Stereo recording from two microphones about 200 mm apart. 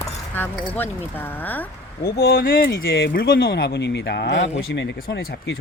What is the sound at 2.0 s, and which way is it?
Speech, 50° left (ahead or behind).